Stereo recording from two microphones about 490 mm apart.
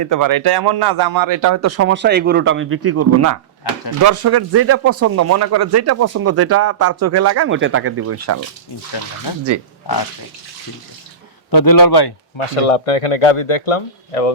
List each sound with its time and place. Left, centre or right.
0.0 s speech: right
9.3 s a man's voice: left
11.5 s a man's voice: left
12.4 s speech: left